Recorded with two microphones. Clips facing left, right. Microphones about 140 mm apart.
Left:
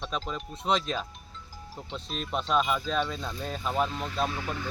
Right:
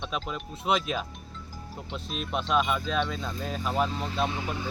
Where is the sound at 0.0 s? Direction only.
5° right (ahead or behind).